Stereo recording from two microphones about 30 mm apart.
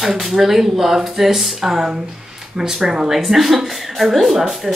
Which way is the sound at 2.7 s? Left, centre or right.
Centre.